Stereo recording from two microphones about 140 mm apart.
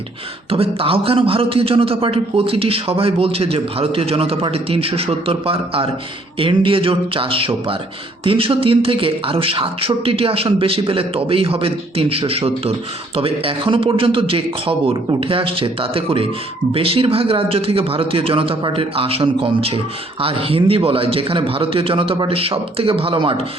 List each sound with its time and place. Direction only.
0.5 s a man's voice: 45° right (ahead or behind)